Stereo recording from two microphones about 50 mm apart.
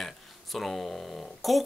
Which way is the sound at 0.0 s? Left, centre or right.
Centre.